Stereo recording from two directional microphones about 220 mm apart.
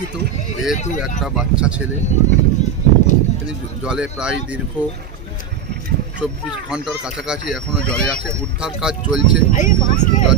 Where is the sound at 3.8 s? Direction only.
5° right (ahead or behind).